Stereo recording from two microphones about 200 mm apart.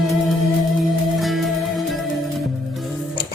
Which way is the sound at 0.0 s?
Centre (ahead or behind).